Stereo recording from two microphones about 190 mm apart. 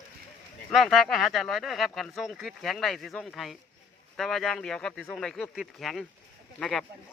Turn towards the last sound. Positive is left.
turn(degrees=5)  # may be behind; listen again after turning